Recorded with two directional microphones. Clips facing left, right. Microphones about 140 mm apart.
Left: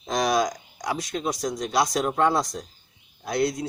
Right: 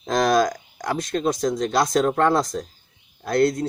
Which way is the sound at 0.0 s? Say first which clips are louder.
Right 4 dB; 50° right (ahead or behind).